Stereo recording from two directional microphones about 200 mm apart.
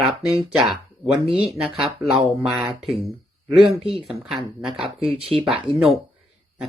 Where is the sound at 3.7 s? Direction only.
30° right (ahead or behind).